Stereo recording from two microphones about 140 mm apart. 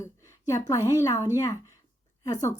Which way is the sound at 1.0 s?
25° left (ahead or behind).